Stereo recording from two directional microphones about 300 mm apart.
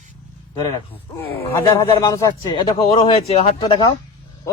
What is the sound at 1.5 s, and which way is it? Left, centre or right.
A man's voice, centre.